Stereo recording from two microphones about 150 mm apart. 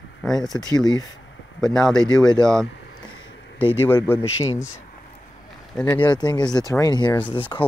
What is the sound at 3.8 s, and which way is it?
Speech, 15° left (ahead or behind).